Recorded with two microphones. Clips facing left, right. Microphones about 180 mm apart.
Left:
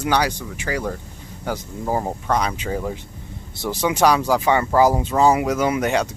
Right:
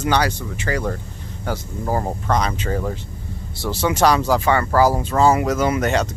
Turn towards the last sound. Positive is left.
turn(degrees=10)  # may be behind; listen again after turning